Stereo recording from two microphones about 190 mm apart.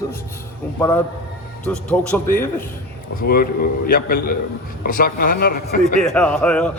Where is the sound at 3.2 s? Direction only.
55° left (ahead or behind).